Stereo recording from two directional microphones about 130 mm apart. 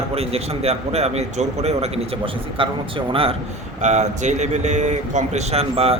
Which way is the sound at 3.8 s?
65° right (ahead or behind).